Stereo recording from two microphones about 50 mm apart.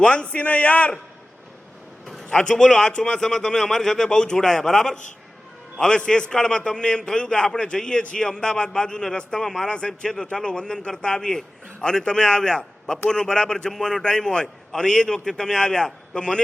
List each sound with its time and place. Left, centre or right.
0.0 s a man's voice: centre
2.3 s a man's voice: centre